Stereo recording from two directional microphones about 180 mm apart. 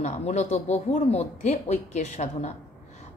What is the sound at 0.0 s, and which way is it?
A woman's voice, 40° left (ahead or behind).